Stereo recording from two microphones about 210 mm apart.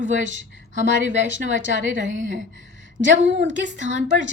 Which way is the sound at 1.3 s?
65° right (ahead or behind).